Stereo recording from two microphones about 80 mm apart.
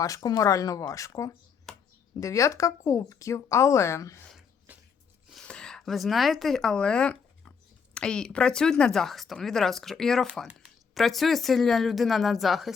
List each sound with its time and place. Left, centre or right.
0.0 s speech: left
1.7 s a sound: centre
2.2 s speech: left
4.7 s a sound: centre
5.4 s speech: centre
10.4 s speech: centre
10.9 s speech: centre